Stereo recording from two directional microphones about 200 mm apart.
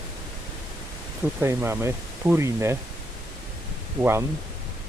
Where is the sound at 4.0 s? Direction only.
10° right (ahead or behind).